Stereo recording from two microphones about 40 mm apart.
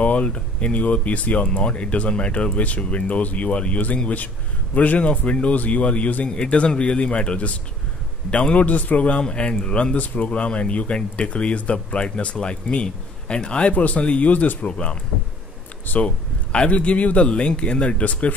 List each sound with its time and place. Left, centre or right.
0.0 s speech: left
6.2 s a man's voice: left
8.6 s speech: left
9.2 s a man's voice: left
9.9 s a man's voice: left
14.7 s a man's voice: left
15.9 s speech: left
16.5 s a man's voice: left